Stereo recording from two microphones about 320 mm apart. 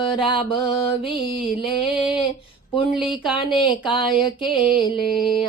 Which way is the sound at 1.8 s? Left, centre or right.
Centre.